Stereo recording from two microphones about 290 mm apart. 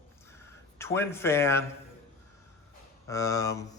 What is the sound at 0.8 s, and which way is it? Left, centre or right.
Speech, centre.